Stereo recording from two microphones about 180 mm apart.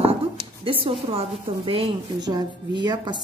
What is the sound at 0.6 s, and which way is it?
A woman's voice, 30° right (ahead or behind).